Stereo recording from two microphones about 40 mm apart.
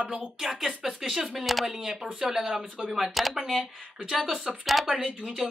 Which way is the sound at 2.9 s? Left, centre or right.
Centre.